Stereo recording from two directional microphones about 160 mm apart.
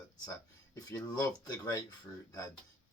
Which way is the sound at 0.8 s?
20° left (ahead or behind).